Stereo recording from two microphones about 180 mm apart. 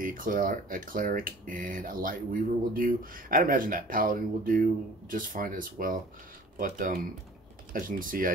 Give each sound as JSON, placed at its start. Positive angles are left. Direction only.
{"t": 0.0, "sound": "speech", "side_deg": -50}